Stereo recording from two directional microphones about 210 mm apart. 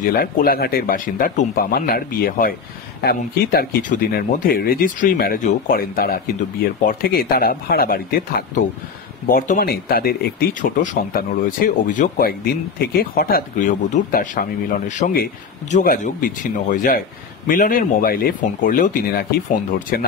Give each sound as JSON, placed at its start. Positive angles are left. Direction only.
{"t": 0.0, "sound": "speech", "side_deg": 45}